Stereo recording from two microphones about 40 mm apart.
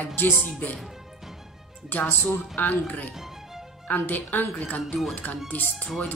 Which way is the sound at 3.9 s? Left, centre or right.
Left.